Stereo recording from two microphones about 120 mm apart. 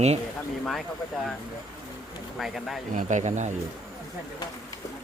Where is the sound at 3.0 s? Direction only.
85° right.